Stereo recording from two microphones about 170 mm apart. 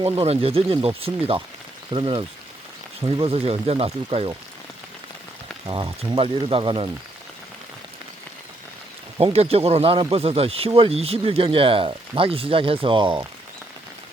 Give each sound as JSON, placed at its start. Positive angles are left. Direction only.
{"t": 0.0, "sound": "speech", "side_deg": -35}
{"t": 5.6, "sound": "speech", "side_deg": -30}
{"t": 9.1, "sound": "speech", "side_deg": -35}